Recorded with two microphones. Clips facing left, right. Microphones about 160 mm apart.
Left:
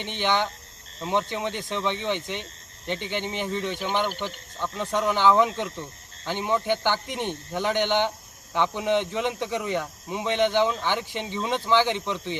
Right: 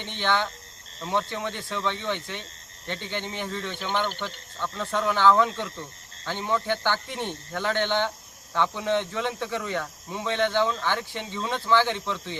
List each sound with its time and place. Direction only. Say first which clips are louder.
0.0 s speech: left 1 dB; 15° left (ahead or behind)